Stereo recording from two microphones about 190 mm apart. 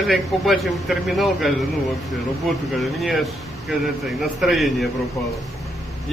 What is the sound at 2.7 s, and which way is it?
A man's voice, centre (ahead or behind).